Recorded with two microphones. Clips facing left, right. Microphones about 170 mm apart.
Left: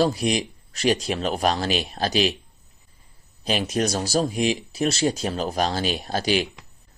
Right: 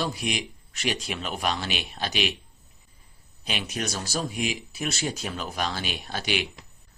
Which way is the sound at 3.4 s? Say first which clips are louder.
Left 8 dB; 35° left (ahead or behind).